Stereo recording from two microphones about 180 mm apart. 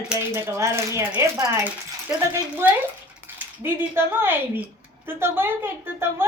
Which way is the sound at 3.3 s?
10° right (ahead or behind).